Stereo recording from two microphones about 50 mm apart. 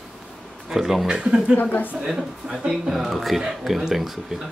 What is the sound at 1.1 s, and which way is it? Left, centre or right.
Speech, centre.